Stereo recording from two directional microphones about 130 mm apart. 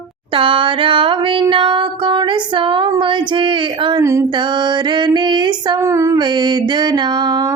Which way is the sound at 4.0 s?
20° right (ahead or behind).